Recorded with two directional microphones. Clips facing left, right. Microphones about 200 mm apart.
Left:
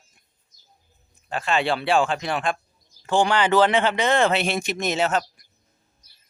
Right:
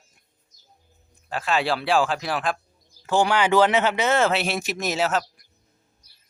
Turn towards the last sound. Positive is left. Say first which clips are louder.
# left 1 dB
turn(degrees=0)  # may be behind; listen again after turning